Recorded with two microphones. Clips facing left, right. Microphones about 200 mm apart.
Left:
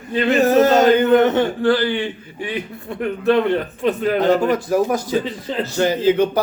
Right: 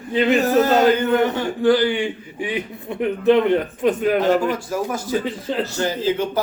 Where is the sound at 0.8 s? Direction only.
20° left (ahead or behind).